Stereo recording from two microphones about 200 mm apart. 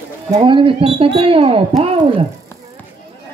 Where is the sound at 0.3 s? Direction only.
25° right (ahead or behind).